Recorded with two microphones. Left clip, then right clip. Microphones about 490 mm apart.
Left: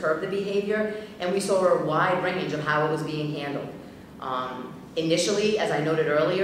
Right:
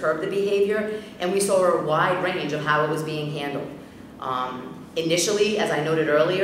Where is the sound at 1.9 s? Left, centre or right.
Right.